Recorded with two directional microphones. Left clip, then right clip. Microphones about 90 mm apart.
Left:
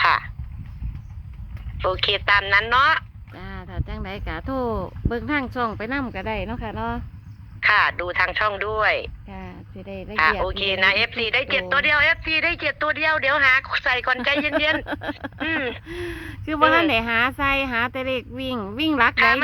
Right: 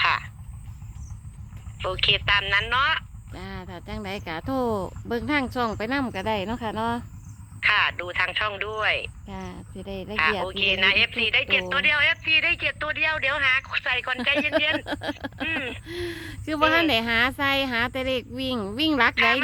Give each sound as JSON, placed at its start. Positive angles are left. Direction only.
{"t": 0.0, "sound": "a sound", "side_deg": 40}
{"t": 1.8, "sound": "speech", "side_deg": 40}
{"t": 3.3, "sound": "speech", "side_deg": -45}
{"t": 7.6, "sound": "a man's voice", "side_deg": 40}
{"t": 9.2, "sound": "speech", "side_deg": -60}
{"t": 10.4, "sound": "a man's voice", "side_deg": 40}
{"t": 14.8, "sound": "speech", "side_deg": -30}
{"t": 15.4, "sound": "a man's voice", "side_deg": 40}
{"t": 15.9, "sound": "speech", "side_deg": -20}
{"t": 19.1, "sound": "a man's voice", "side_deg": 35}